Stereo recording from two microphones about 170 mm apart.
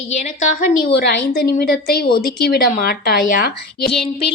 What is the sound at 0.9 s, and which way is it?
A woman's voice, 70° left (ahead or behind).